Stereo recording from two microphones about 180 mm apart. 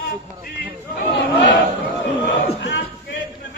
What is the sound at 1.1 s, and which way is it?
Crowd, 90° left.